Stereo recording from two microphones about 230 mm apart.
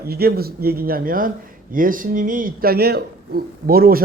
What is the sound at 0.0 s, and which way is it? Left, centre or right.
A man's voice, right.